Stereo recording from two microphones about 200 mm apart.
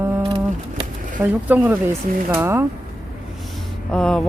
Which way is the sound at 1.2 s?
10° right (ahead or behind).